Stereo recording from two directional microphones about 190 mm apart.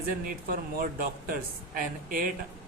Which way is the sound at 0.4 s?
50° right (ahead or behind).